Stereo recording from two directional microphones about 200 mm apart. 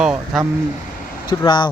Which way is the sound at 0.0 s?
Centre (ahead or behind).